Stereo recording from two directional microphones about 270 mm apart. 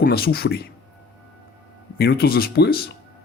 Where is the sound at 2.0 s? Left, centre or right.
Left.